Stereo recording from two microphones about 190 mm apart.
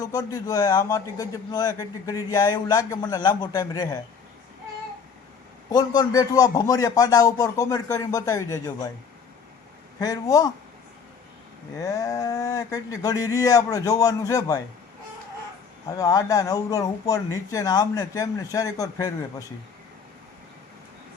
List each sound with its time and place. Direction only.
0.0 s a man's voice: 20° left (ahead or behind)
5.7 s a man's voice: 20° left (ahead or behind)
10.0 s a man's voice: 20° left (ahead or behind)
11.8 s speech: 20° left (ahead or behind)
16.0 s speech: 20° left (ahead or behind)